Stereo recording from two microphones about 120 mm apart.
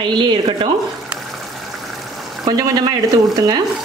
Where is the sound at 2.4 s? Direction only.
30° right (ahead or behind).